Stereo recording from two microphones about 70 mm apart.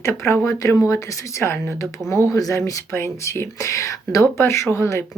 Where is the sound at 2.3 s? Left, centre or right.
Left.